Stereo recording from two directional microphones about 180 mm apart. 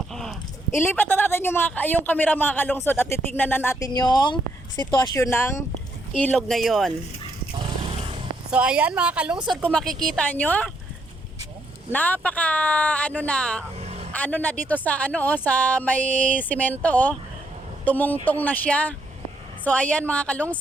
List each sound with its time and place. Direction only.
0.1 s a sound: centre (ahead or behind)
0.7 s a man's voice: 10° left (ahead or behind)
3.9 s a man's voice: 25° left (ahead or behind)
6.1 s speech: 5° left (ahead or behind)
7.8 s vehicle: 30° right (ahead or behind)
8.4 s a man's voice: 5° right (ahead or behind)
11.9 s a man's voice: 10° left (ahead or behind)
13.7 s vehicle: 35° right (ahead or behind)
14.1 s a man's voice: 10° left (ahead or behind)
16.0 s a sound: 45° right (ahead or behind)
16.4 s a man's voice: 10° left (ahead or behind)